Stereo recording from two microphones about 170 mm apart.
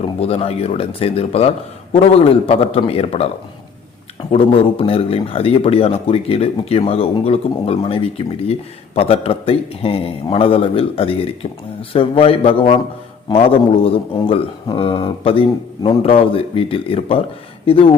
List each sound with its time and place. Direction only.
0.0 s a man's voice: 35° left (ahead or behind)
4.3 s a man's voice: 35° left (ahead or behind)